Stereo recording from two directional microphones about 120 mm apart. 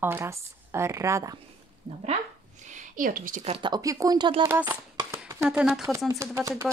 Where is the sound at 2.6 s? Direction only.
90° right.